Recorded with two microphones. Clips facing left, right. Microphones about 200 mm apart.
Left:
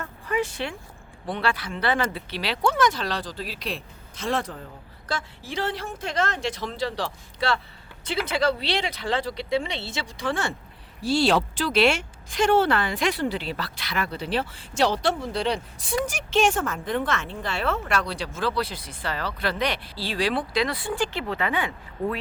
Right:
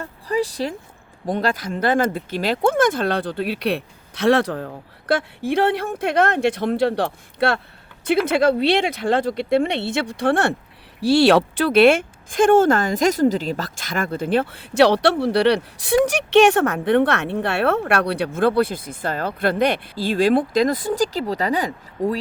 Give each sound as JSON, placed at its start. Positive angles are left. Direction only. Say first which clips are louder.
{"t": 0.0, "sound": "a sound", "louder": "right 4 dB", "side_deg": -35}
{"t": 1.3, "sound": "speech", "louder": "right 5 dB", "side_deg": -40}
{"t": 22.0, "sound": "speech", "louder": "right 5 dB", "side_deg": -90}